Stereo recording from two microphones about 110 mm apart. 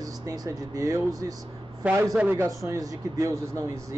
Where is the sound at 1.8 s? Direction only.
15° right (ahead or behind).